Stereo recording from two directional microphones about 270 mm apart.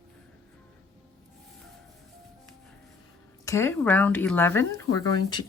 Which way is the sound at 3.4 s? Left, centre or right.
Centre.